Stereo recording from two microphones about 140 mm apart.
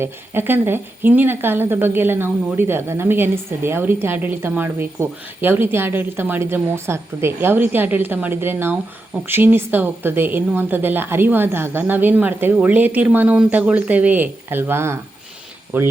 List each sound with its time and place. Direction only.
0.0 s a woman's voice: 15° right (ahead or behind)